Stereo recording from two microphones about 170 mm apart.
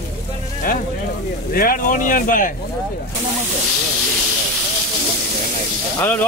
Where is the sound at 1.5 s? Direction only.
55° left (ahead or behind).